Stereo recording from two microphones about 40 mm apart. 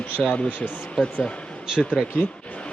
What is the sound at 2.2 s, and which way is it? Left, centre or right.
Speech, left.